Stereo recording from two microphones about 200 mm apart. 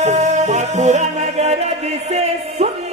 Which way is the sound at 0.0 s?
35° right (ahead or behind).